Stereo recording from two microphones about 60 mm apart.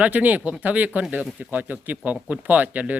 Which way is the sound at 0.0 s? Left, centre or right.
Right.